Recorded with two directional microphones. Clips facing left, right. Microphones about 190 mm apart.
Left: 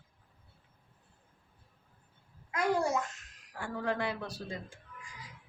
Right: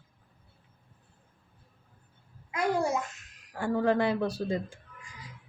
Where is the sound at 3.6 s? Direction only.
35° right (ahead or behind).